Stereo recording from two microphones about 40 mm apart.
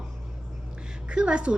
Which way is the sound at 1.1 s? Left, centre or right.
Right.